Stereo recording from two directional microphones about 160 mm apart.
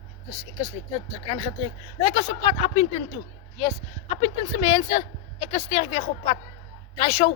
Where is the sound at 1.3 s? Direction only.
35° left (ahead or behind).